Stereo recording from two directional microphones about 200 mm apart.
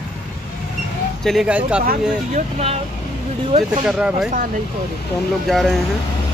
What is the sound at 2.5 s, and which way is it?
Speech, 30° right (ahead or behind).